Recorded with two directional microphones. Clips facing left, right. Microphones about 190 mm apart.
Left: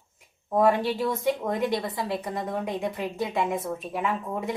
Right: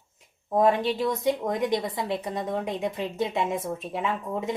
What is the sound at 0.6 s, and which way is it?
A woman's voice, 20° right (ahead or behind).